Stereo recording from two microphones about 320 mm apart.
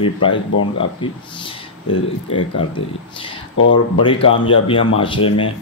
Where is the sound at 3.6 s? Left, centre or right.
Left.